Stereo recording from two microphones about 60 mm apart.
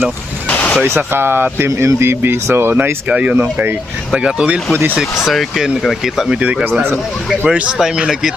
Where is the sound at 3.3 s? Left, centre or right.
Right.